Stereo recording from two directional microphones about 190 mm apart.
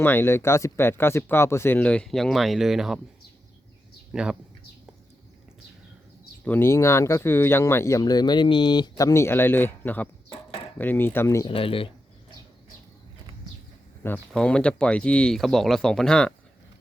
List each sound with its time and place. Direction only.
0.0 s speech: 10° left (ahead or behind)
4.1 s speech: 5° right (ahead or behind)
6.4 s speech: 10° left (ahead or behind)
11.4 s speech: 30° left (ahead or behind)
14.0 s speech: 10° left (ahead or behind)